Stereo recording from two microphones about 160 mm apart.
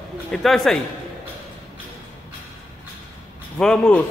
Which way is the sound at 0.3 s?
Centre (ahead or behind).